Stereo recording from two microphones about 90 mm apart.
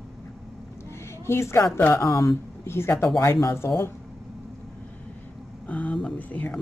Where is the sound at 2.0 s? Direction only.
35° left (ahead or behind).